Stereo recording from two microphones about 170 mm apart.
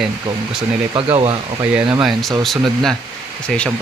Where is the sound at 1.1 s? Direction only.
30° right (ahead or behind).